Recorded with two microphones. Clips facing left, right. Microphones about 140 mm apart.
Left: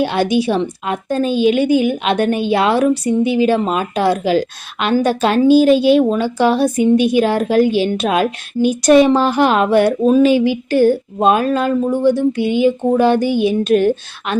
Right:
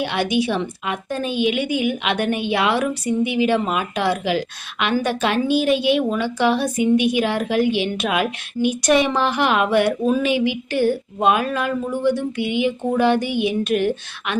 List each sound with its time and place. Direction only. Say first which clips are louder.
0.0 s a woman's voice: left 5 dB; 35° left (ahead or behind)